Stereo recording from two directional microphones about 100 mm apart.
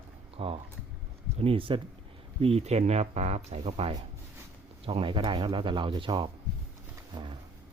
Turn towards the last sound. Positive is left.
turn(degrees=-50)  # may be behind; listen again after turning